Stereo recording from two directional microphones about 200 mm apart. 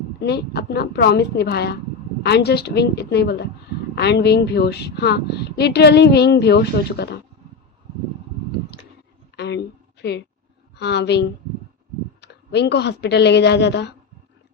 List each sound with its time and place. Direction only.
0.2 s speech: 55° left (ahead or behind)
9.3 s a sound: 60° left (ahead or behind)
10.8 s speech: 55° left (ahead or behind)